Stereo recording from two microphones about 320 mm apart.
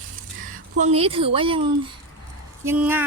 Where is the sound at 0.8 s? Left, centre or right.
Centre.